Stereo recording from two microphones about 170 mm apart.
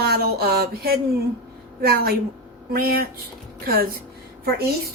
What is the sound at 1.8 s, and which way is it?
A woman's voice, 65° right (ahead or behind).